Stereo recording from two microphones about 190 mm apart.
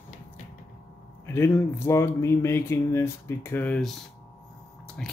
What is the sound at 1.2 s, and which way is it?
Speech, 15° left (ahead or behind).